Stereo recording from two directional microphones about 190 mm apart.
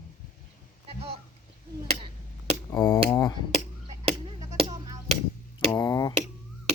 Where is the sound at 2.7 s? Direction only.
20° left (ahead or behind).